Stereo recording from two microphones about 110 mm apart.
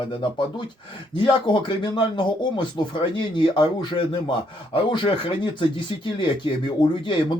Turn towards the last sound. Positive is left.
turn(degrees=45)  # may be behind; listen again after turning